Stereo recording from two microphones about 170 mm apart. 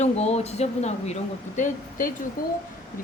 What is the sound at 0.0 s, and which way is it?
A woman's voice, 40° left (ahead or behind).